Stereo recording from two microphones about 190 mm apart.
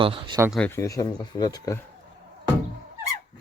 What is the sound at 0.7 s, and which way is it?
Speech, 15° left (ahead or behind).